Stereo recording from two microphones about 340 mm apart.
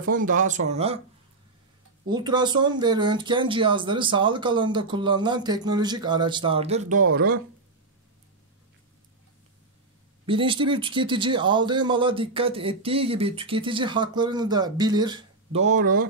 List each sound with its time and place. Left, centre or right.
0.1 s speech: right
2.0 s speech: centre
10.2 s speech: centre